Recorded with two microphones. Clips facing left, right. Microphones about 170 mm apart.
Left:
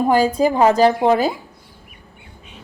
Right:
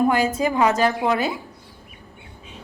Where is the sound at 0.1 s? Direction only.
35° left (ahead or behind).